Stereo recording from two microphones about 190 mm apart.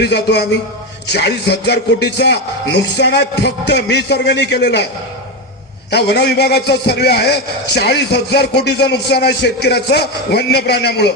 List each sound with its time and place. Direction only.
0.0 s speech: 60° left (ahead or behind)
5.9 s speech: 60° left (ahead or behind)